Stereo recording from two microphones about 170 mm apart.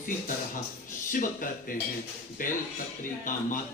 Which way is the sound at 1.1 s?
55° left (ahead or behind).